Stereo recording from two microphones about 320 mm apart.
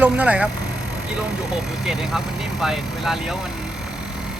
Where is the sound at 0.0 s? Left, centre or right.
Centre.